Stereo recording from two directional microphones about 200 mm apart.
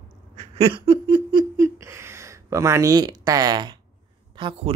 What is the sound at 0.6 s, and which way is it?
Speech, 25° right (ahead or behind).